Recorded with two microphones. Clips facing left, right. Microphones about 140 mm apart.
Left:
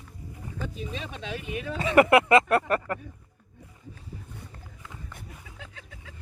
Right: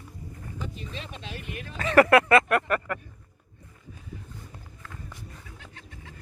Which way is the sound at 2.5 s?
30° left (ahead or behind).